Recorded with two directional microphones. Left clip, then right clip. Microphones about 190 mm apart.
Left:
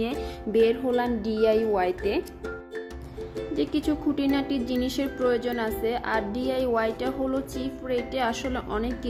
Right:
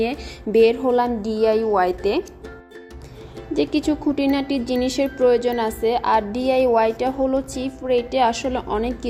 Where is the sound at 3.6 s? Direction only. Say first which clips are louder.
Right 7 dB; 15° right (ahead or behind).